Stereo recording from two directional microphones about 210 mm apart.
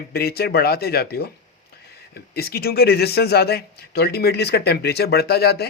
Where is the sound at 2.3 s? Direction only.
45° left (ahead or behind).